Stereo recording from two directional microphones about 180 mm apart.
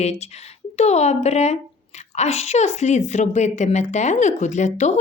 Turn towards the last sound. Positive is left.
turn(degrees=40)  # may be behind; listen again after turning